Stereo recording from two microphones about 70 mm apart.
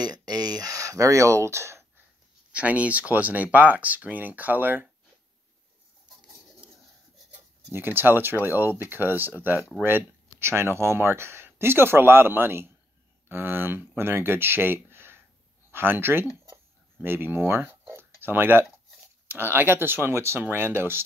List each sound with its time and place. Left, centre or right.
0.0 s a sound: right
2.5 s speech: centre
7.7 s speech: right